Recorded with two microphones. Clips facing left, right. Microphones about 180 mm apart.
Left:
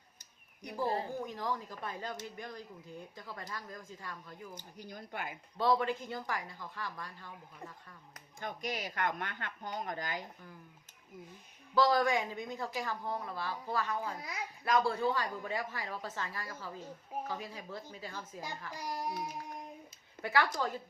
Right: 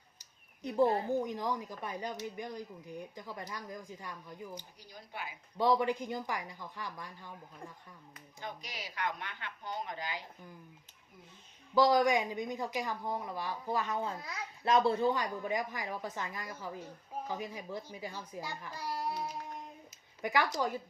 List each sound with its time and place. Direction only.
0.6 s a woman's voice: 25° right (ahead or behind)
4.8 s speech: 50° left (ahead or behind)
5.5 s a woman's voice: 15° right (ahead or behind)
8.4 s speech: 50° left (ahead or behind)
11.7 s a woman's voice: 15° right (ahead or behind)
14.2 s a child's voice: 20° left (ahead or behind)
14.6 s a woman's voice: 25° right (ahead or behind)
18.7 s a child's voice: 15° left (ahead or behind)
20.2 s a woman's voice: 15° right (ahead or behind)